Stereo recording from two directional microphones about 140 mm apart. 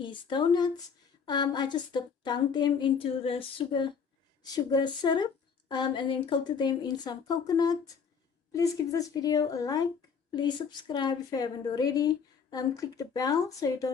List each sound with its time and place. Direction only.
0.0 s a woman's voice: 35° left (ahead or behind)